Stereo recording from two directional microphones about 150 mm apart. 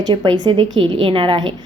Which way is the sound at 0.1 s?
30° right (ahead or behind).